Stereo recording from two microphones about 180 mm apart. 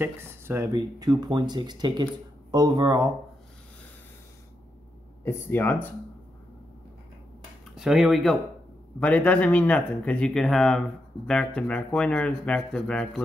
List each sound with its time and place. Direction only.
0.0 s speech: 15° right (ahead or behind)
5.2 s speech: 10° left (ahead or behind)
7.7 s speech: centre (ahead or behind)